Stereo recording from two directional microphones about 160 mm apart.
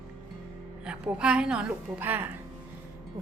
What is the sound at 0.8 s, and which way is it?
A woman's voice, 5° right (ahead or behind).